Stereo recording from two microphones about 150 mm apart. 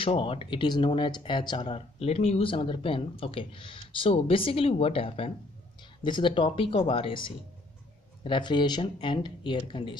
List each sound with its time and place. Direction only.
0.0 s speech: 35° left (ahead or behind)